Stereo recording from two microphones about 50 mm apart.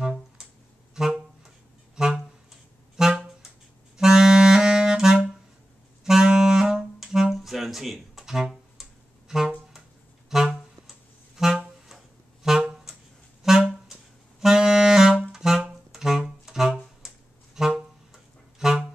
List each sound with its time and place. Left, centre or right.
0.4 s a sound: centre
1.0 s music: centre
4.0 s clarinet: centre
6.0 s saxophone: centre
10.3 s music: centre
12.4 s wind instrument: centre
13.4 s music: centre
14.4 s saxophone: centre
15.3 s music: centre